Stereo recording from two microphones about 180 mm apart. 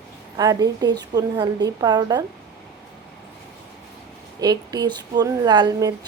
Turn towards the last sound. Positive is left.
turn(degrees=-20)  # may be behind; listen again after turning